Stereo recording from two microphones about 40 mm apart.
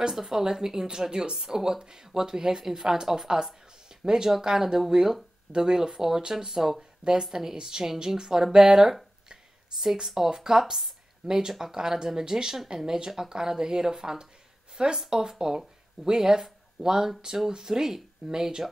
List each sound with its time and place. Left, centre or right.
0.0 s speech: centre